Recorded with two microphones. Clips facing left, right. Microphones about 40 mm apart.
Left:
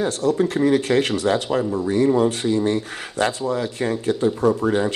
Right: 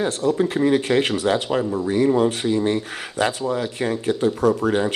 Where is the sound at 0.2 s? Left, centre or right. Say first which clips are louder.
Left 1 dB; centre.